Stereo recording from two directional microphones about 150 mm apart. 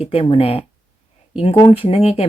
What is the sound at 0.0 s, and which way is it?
Speech, 40° left (ahead or behind).